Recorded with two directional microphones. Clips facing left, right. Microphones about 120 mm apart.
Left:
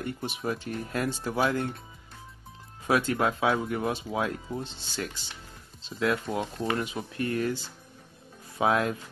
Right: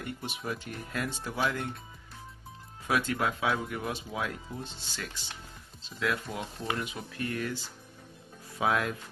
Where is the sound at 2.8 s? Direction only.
35° left (ahead or behind).